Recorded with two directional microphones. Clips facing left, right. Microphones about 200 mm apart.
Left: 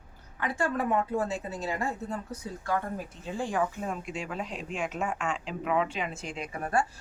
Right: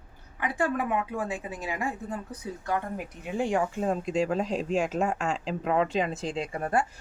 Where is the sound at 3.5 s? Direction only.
35° right (ahead or behind).